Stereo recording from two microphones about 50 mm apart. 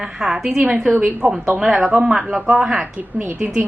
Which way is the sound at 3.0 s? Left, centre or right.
Right.